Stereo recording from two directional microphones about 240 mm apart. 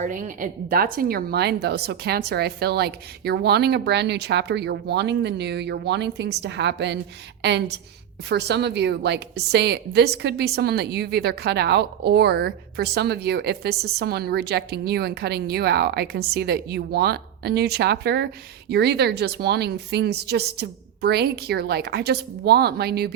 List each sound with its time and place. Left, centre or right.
0.0 s a woman's voice: right
8.3 s a woman's voice: right